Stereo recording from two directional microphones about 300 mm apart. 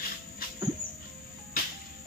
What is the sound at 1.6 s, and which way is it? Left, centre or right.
Cricket, left.